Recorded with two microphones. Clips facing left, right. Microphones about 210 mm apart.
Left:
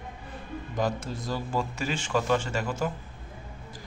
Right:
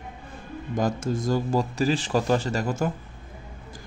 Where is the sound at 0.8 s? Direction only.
45° right (ahead or behind).